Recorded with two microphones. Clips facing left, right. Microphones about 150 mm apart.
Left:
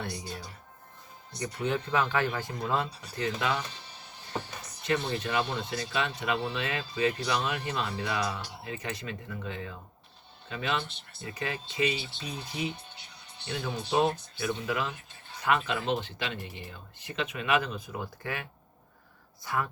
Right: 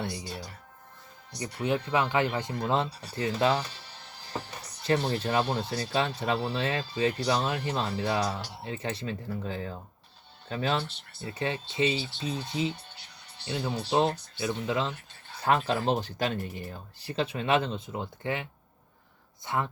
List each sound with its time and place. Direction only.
1.4 s speech: 15° right (ahead or behind); by 3.6 s 30° right (ahead or behind)
4.8 s speech: 35° right (ahead or behind)
19.5 s speech: 25° right (ahead or behind)